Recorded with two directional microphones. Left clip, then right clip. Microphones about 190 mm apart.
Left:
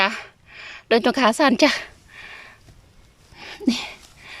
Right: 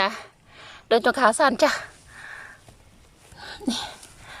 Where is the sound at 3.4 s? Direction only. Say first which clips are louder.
Left 4 dB; 10° left (ahead or behind).